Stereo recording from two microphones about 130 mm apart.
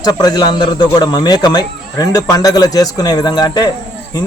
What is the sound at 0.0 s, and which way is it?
A man's voice, 30° left (ahead or behind).